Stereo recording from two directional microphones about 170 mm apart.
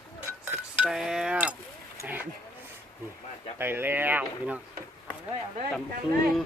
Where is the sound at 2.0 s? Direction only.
10° right (ahead or behind).